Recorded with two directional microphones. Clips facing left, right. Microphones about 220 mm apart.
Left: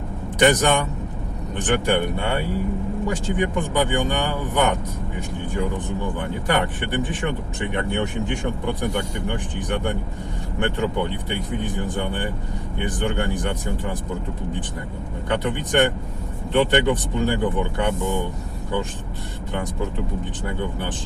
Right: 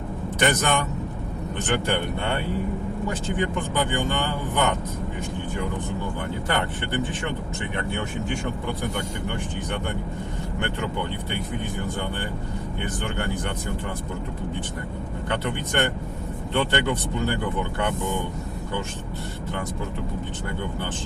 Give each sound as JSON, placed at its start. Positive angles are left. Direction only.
{"t": 0.3, "sound": "speech", "side_deg": 15}
{"t": 6.5, "sound": "speech", "side_deg": 15}
{"t": 9.3, "sound": "speech", "side_deg": 15}
{"t": 12.8, "sound": "speech", "side_deg": 15}
{"t": 15.3, "sound": "speech", "side_deg": 15}